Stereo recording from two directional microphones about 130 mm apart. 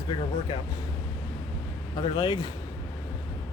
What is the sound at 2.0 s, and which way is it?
Speech, 35° left (ahead or behind).